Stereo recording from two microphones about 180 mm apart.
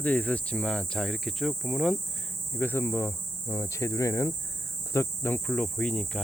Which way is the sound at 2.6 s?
10° left (ahead or behind).